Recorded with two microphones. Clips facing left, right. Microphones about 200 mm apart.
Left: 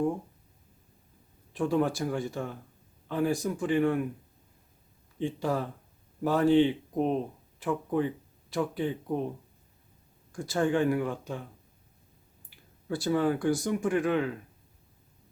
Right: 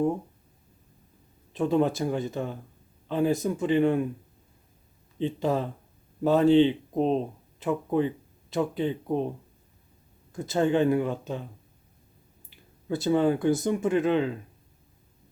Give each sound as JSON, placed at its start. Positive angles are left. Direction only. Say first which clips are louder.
{"t": 1.5, "sound": "speech", "louder": "right 3 dB", "side_deg": -20}
{"t": 5.2, "sound": "speech", "louder": "right 3 dB", "side_deg": -20}
{"t": 10.3, "sound": "speech", "louder": "right 3 dB", "side_deg": -20}
{"t": 12.5, "sound": "speech", "louder": "right 3 dB", "side_deg": -20}